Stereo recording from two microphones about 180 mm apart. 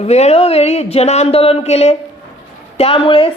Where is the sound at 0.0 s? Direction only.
35° left (ahead or behind).